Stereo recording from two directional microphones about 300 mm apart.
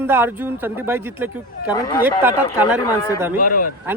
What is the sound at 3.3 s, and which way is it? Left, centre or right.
Speech, left.